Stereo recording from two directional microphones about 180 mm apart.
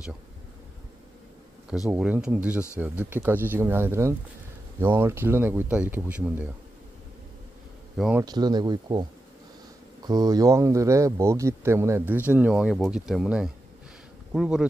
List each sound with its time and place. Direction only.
1.9 s speech: 5° right (ahead or behind)
8.2 s speech: 20° right (ahead or behind)
10.0 s speech: 20° right (ahead or behind); by 14.7 s 5° right (ahead or behind)